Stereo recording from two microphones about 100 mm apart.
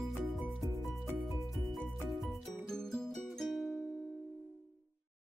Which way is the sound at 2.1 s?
Centre (ahead or behind).